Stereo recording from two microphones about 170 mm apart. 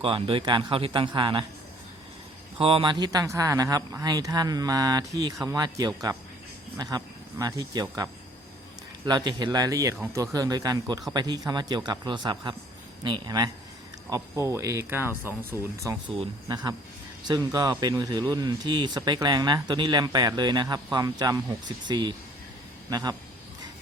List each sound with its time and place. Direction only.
0.0 s speech: 30° right (ahead or behind)
2.6 s speech: 30° right (ahead or behind); by 15.4 s 10° right (ahead or behind)
16.1 s speech: 30° right (ahead or behind)